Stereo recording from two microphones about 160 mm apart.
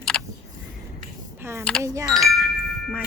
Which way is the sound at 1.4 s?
15° right (ahead or behind).